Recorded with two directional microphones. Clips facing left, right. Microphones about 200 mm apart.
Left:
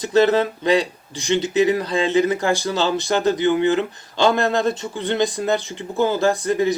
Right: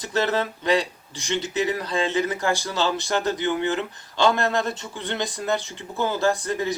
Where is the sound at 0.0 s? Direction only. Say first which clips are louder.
Left 8 dB; 20° left (ahead or behind).